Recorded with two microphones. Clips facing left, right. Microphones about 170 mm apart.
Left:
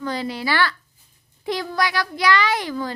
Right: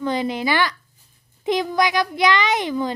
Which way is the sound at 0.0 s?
20° right (ahead or behind).